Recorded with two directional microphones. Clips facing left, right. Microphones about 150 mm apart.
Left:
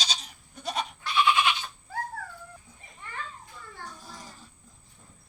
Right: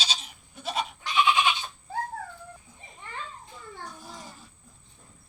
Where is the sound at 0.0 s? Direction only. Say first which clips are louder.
Right 1 dB; 5° right (ahead or behind).